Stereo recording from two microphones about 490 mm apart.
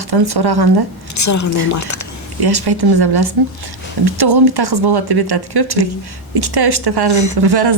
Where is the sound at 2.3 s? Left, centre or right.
Right.